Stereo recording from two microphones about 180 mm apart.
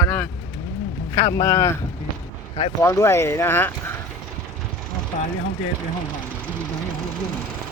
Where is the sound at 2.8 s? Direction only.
15° left (ahead or behind).